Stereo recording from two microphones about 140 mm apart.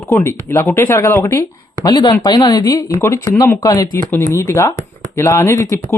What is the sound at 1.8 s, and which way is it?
Speech, 30° left (ahead or behind).